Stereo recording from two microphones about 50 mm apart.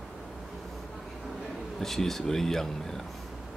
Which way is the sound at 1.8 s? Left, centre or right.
Centre.